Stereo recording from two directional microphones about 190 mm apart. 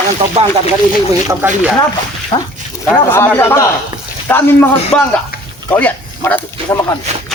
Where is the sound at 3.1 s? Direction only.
10° left (ahead or behind).